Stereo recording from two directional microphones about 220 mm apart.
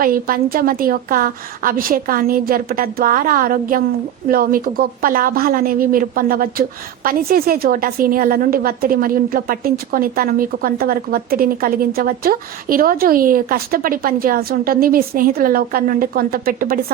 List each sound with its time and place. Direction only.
0.0 s a woman's voice: 40° right (ahead or behind)